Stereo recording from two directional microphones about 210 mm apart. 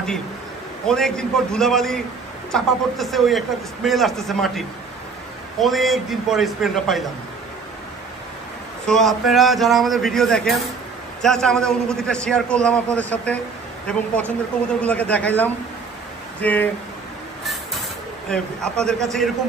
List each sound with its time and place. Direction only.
0.8 s a man's voice: 5° left (ahead or behind)
8.8 s a man's voice: centre (ahead or behind)
18.3 s a man's voice: 5° left (ahead or behind)